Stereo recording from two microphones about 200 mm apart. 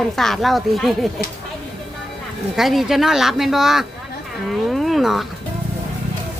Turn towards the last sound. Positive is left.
turn(degrees=0)  # may be behind; listen again after turning